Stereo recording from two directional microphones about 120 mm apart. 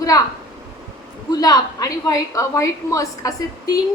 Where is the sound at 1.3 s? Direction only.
35° left (ahead or behind).